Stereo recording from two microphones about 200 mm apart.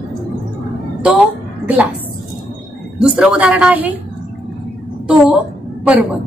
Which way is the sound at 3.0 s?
5° right (ahead or behind).